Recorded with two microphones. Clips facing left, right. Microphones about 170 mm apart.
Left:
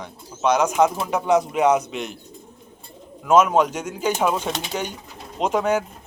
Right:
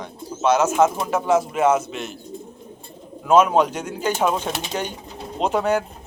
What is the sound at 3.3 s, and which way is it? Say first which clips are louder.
Speech: right 1 dB; 10° left (ahead or behind).